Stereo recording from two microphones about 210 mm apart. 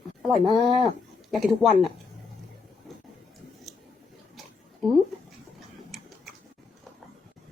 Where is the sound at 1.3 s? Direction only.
Centre (ahead or behind).